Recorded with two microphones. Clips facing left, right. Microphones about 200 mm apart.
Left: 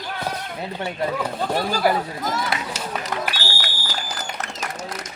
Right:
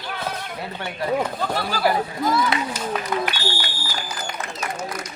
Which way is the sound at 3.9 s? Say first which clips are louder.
Even; 75° left (ahead or behind).